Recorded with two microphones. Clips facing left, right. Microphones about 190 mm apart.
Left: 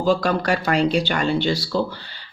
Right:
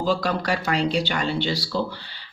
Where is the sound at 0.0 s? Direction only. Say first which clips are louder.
Left 4 dB; 50° left (ahead or behind).